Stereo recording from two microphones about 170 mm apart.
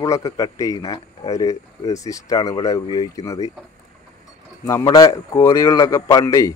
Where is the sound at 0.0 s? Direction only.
20° left (ahead or behind).